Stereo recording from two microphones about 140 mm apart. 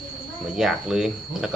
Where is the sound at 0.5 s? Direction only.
5° right (ahead or behind).